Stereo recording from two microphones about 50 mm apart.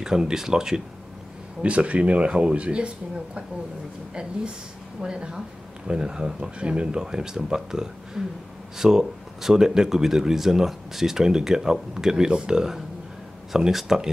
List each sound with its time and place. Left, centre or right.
0.0 s speech: centre
1.6 s speech: right
4.1 s speech: centre